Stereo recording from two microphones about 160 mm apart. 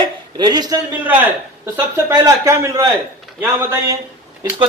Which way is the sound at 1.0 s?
10° right (ahead or behind).